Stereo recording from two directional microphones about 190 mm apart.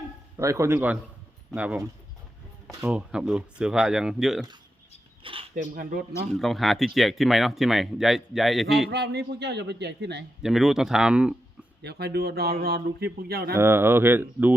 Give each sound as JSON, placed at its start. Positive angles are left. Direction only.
{"t": 0.3, "sound": "speech", "side_deg": -15}
{"t": 2.8, "sound": "speech", "side_deg": -5}
{"t": 5.2, "sound": "speech", "side_deg": -30}
{"t": 5.7, "sound": "speech", "side_deg": -45}
{"t": 6.3, "sound": "speech", "side_deg": 0}
{"t": 8.9, "sound": "speech", "side_deg": -60}
{"t": 10.4, "sound": "speech", "side_deg": 0}
{"t": 11.8, "sound": "speech", "side_deg": -60}
{"t": 13.6, "sound": "speech", "side_deg": -10}